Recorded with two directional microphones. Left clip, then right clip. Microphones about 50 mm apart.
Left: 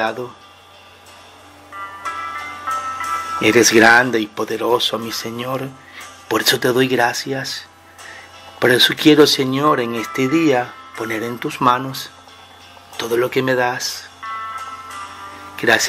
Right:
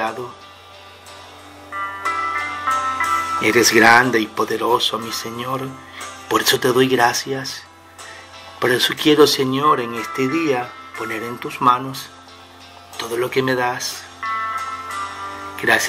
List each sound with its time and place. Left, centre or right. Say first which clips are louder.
1.8 s music: right 4 dB; right
3.3 s speech: left 3 dB; left
14.2 s music: right 5 dB; right
15.5 s music: left 2 dB; left